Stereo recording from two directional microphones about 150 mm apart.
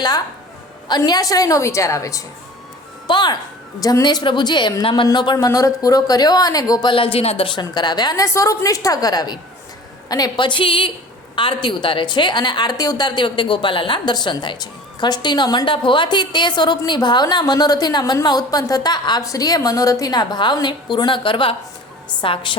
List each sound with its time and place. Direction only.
0.9 s a woman's voice: 30° left (ahead or behind)